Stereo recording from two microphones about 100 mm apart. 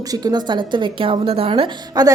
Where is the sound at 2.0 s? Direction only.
40° right (ahead or behind).